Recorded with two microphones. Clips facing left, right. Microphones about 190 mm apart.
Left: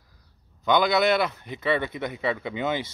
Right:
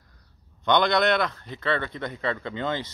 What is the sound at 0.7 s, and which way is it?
A man's voice, 5° left (ahead or behind).